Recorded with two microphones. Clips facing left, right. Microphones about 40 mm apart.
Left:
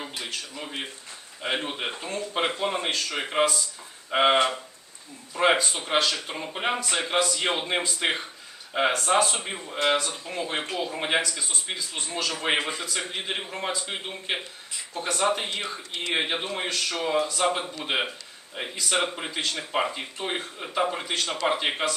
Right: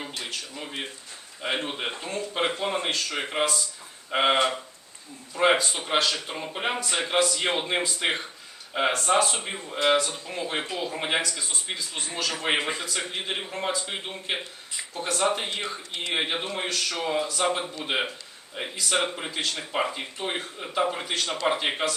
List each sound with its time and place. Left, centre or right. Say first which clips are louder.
0.0 s speech: even; centre
12.5 s a man's voice: even; centre
12.8 s speech: even; centre